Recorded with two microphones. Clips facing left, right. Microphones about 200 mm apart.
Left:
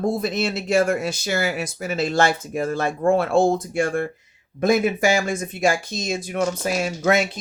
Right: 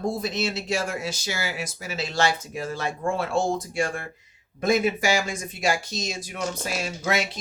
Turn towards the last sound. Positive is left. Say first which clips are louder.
# left 6 dB
turn(degrees=55)  # may be behind; listen again after turning